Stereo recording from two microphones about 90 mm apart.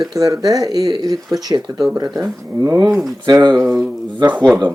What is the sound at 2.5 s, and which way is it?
Speech, 35° right (ahead or behind).